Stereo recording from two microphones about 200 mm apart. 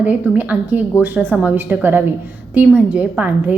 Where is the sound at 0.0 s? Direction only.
10° right (ahead or behind).